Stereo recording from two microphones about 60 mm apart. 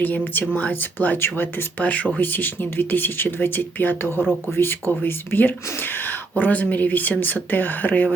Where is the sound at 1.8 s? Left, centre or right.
Left.